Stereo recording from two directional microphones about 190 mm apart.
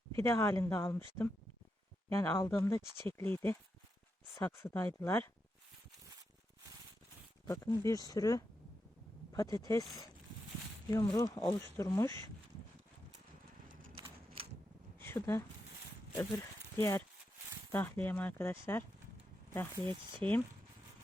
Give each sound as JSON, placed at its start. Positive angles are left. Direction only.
{"t": 0.2, "sound": "speech", "side_deg": 15}
{"t": 7.4, "sound": "speech", "side_deg": 15}
{"t": 10.8, "sound": "speech", "side_deg": 20}
{"t": 14.9, "sound": "a sound", "side_deg": 10}
{"t": 16.7, "sound": "speech", "side_deg": 15}
{"t": 20.2, "sound": "speech", "side_deg": -25}